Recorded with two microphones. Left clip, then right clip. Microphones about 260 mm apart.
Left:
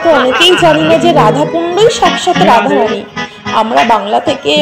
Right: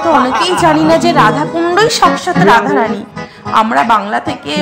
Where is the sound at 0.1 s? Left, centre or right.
Centre.